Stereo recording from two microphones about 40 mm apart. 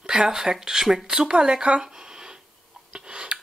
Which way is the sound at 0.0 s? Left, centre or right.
Centre.